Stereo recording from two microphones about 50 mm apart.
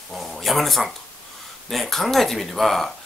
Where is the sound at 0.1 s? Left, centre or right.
Centre.